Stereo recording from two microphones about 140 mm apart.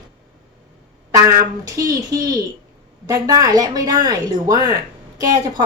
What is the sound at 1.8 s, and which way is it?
A woman's voice, 25° right (ahead or behind).